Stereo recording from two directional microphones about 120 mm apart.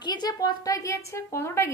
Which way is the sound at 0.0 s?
35° left (ahead or behind).